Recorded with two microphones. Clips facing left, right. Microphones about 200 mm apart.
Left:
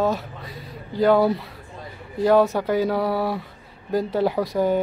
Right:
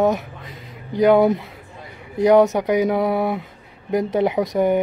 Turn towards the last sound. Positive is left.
turn(degrees=-20)  # may be behind; listen again after turning